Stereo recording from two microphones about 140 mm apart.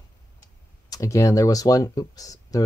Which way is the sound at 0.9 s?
25° left (ahead or behind).